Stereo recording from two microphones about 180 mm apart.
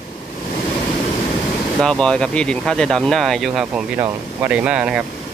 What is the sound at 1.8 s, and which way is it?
Speech, 5° left (ahead or behind).